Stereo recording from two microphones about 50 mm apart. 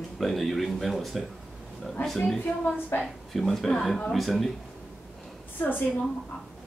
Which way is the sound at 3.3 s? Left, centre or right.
Centre.